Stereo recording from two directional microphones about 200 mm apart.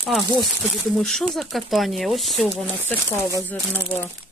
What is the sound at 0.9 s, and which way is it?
Speech, centre (ahead or behind).